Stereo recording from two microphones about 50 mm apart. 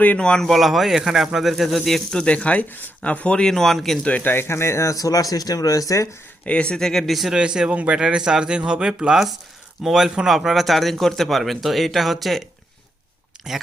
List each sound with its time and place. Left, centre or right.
0.2 s speech: centre
0.4 s speech: centre
2.1 s speech: left
3.4 s speech: centre
4.2 s speech: left
5.9 s speech: left
6.4 s speech: left
6.7 s speech: centre
7.3 s speech: centre
13.5 s speech: centre